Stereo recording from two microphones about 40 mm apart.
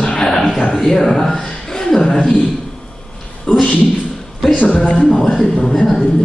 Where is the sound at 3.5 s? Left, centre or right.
Left.